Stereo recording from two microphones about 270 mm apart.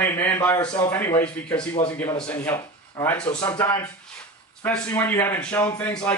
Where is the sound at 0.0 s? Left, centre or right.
Centre.